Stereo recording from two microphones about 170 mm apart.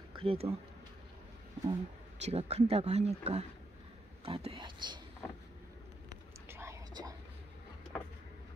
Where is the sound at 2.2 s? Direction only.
40° right (ahead or behind).